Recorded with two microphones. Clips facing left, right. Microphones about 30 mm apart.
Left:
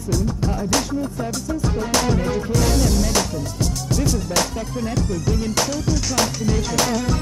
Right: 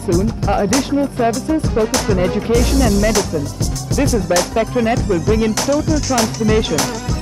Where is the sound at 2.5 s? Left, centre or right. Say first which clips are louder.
Right 5 dB; right.